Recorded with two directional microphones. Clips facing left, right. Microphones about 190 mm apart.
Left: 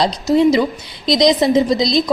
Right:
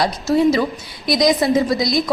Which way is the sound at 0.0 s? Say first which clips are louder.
Left 2 dB; 20° left (ahead or behind).